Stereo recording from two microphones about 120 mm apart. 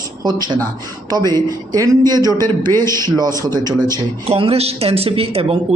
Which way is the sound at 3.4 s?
30° right (ahead or behind).